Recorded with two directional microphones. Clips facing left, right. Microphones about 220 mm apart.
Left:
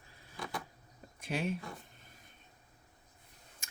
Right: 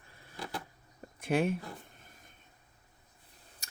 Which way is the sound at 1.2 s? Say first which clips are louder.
Right 7 dB; 55° right (ahead or behind).